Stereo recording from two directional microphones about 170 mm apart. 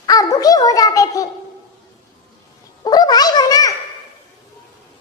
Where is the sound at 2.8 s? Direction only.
25° left (ahead or behind).